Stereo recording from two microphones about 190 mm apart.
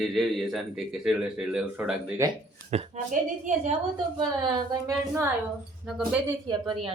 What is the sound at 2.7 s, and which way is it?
Speech, 40° right (ahead or behind).